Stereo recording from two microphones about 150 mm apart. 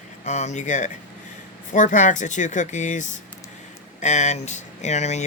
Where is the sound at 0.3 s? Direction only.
50° left (ahead or behind).